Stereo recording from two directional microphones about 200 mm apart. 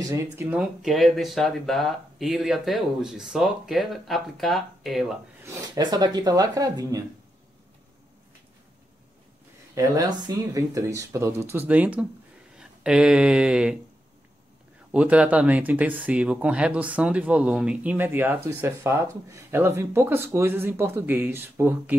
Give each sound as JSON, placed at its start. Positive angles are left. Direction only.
{"t": 0.0, "sound": "speech", "side_deg": -15}
{"t": 5.4, "sound": "speech", "side_deg": -15}
{"t": 9.8, "sound": "speech", "side_deg": -20}
{"t": 14.9, "sound": "speech", "side_deg": -5}